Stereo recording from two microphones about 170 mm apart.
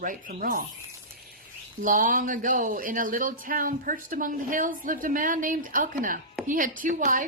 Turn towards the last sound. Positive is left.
turn(degrees=-50)  # may be behind; listen again after turning